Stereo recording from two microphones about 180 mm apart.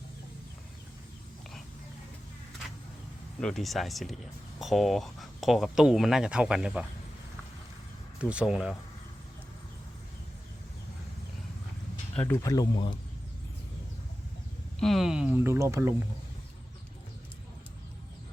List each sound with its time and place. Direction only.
3.4 s speech: centre (ahead or behind)
8.2 s speech: 5° right (ahead or behind)
12.1 s speech: 5° left (ahead or behind)
12.4 s speech: 20° left (ahead or behind)
14.8 s speech: centre (ahead or behind); by 16.0 s 15° right (ahead or behind)